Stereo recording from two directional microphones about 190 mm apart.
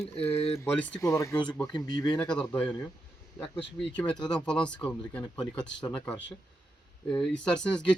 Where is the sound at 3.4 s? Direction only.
25° left (ahead or behind).